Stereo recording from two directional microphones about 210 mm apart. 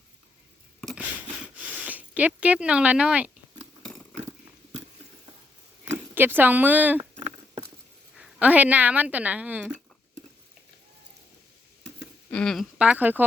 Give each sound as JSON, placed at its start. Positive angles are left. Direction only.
{"t": 0.8, "sound": "a sound", "side_deg": 0}
{"t": 1.5, "sound": "speech", "side_deg": -5}
{"t": 4.2, "sound": "biting", "side_deg": -35}
{"t": 5.8, "sound": "speech", "side_deg": -10}
{"t": 7.2, "sound": "patter", "side_deg": -35}
{"t": 8.1, "sound": "speech", "side_deg": -5}
{"t": 12.3, "sound": "speech", "side_deg": 5}